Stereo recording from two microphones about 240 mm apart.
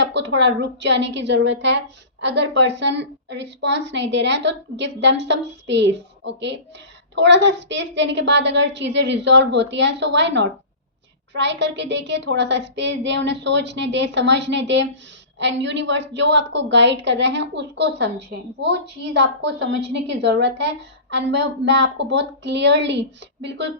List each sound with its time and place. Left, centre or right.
0.0 s a woman's voice: right